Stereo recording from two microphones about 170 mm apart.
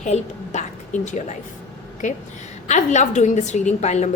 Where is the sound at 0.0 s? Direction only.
45° left (ahead or behind).